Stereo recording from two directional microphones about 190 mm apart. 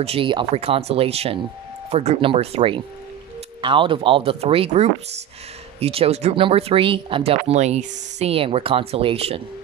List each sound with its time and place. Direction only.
0.0 s speech: 30° right (ahead or behind)